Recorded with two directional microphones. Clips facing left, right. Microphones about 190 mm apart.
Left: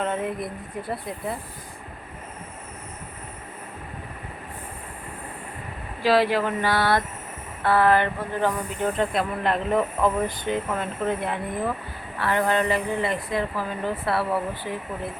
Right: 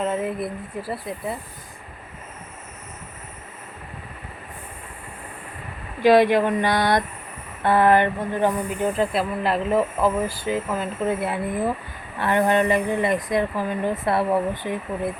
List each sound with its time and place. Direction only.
0.0 s speech: 5° right (ahead or behind)
6.0 s speech: 20° right (ahead or behind)
8.8 s speech: 5° right (ahead or behind)
12.2 s speech: 20° right (ahead or behind)